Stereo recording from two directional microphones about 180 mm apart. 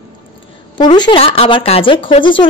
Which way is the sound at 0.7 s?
25° left (ahead or behind).